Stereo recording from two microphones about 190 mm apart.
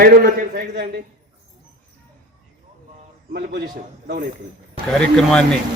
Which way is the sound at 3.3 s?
55° right (ahead or behind).